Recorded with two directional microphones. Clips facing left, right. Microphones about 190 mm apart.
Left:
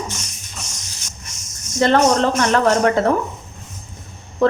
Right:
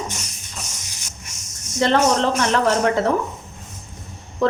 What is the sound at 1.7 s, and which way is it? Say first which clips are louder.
Speech: left 3 dB; 50° left (ahead or behind).